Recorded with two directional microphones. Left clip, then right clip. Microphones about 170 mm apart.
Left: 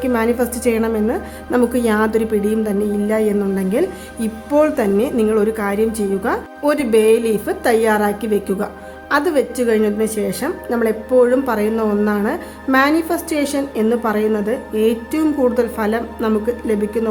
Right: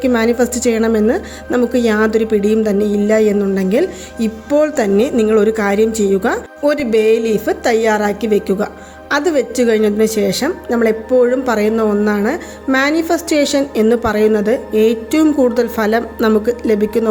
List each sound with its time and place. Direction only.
0.0 s a woman's voice: 25° right (ahead or behind)